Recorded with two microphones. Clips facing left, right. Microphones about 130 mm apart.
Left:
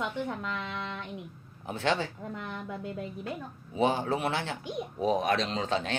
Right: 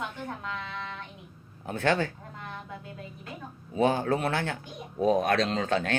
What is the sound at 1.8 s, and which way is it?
Speech, 50° right (ahead or behind).